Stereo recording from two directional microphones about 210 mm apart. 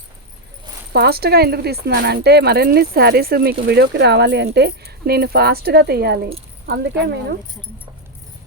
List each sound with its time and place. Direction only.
0.9 s speech: 50° right (ahead or behind)